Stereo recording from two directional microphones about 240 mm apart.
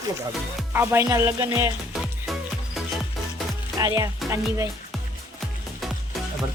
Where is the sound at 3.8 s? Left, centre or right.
Centre.